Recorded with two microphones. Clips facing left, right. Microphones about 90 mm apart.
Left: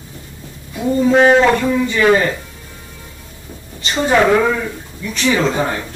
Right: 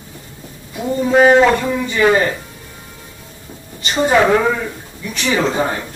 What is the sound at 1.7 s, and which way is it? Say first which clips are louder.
Speech: left 2 dB; 15° right (ahead or behind).